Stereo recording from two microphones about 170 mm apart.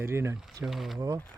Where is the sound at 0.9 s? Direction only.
20° right (ahead or behind).